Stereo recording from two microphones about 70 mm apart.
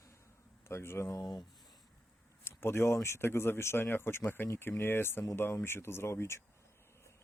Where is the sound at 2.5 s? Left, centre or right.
Left.